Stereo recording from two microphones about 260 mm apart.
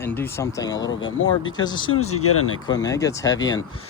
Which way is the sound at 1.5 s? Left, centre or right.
Centre.